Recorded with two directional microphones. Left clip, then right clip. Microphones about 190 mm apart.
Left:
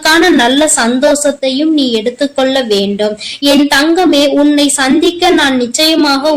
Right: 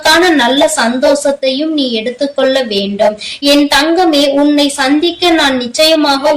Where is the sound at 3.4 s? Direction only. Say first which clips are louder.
Even; 55° left (ahead or behind).